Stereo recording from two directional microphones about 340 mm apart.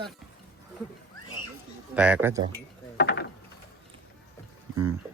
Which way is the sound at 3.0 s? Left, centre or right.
Left.